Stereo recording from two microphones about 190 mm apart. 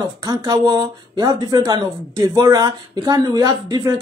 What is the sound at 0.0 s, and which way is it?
A woman's voice, 20° right (ahead or behind).